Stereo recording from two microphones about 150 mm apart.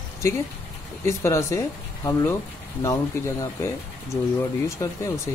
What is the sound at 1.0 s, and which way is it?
Speech, 20° left (ahead or behind).